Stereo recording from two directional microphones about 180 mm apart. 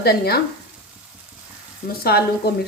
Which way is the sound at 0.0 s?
60° left (ahead or behind).